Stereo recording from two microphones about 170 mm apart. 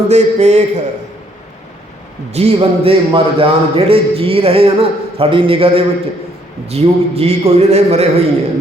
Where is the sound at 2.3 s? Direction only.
40° right (ahead or behind).